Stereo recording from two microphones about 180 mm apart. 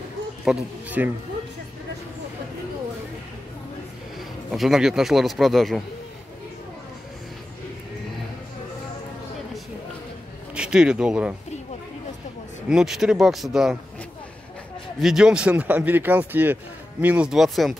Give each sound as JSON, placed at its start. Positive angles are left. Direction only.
{"t": 0.5, "sound": "speech", "side_deg": -10}
{"t": 4.5, "sound": "a man's voice", "side_deg": 0}
{"t": 10.5, "sound": "speech", "side_deg": -5}
{"t": 12.6, "sound": "a man's voice", "side_deg": -5}
{"t": 15.0, "sound": "a man's voice", "side_deg": 0}